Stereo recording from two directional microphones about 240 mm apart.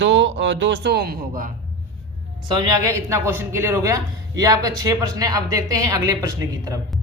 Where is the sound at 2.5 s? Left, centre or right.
Centre.